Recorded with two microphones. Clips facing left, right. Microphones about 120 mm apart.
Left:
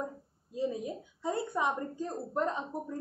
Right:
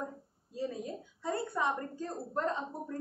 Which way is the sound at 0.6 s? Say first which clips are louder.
Left 4 dB; 15° left (ahead or behind).